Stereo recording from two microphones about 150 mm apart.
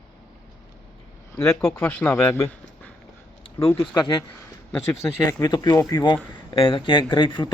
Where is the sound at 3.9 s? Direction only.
30° left (ahead or behind).